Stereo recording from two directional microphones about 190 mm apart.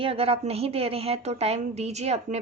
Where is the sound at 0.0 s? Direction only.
30° right (ahead or behind).